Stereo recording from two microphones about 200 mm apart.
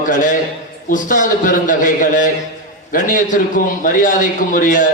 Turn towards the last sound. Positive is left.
turn(degrees=40)  # may be behind; listen again after turning